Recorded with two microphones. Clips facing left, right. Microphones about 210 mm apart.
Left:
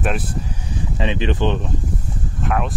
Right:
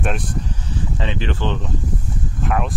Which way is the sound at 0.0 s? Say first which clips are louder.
Left 1 dB; 5° left (ahead or behind).